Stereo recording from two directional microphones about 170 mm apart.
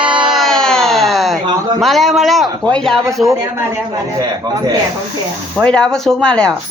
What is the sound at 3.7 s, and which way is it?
A man's voice, 20° right (ahead or behind).